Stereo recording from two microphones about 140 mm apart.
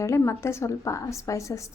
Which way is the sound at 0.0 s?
20° left (ahead or behind).